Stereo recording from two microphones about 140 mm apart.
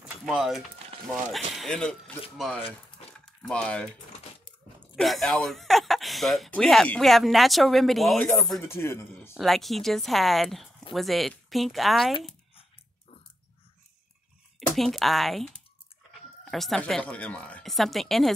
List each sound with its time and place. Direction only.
0.2 s speech: centre (ahead or behind)
3.1 s a sound: 5° left (ahead or behind)
4.9 s speech: centre (ahead or behind)
8.6 s a man's voice: 20° left (ahead or behind)
9.4 s speech: centre (ahead or behind)
14.8 s speech: centre (ahead or behind)